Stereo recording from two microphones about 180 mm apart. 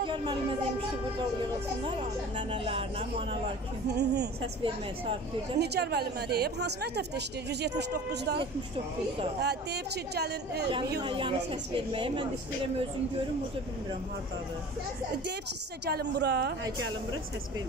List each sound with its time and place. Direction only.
0.0 s a sound: 25° right (ahead or behind)
2.0 s speech: 35° right (ahead or behind)
3.9 s speech: 70° right (ahead or behind)
5.6 s a woman's voice: 60° right (ahead or behind)
11.0 s a woman's voice: 25° right (ahead or behind)
15.8 s a woman's voice: 65° right (ahead or behind)